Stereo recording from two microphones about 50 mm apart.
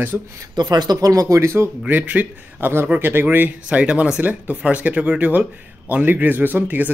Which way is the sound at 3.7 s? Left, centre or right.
Right.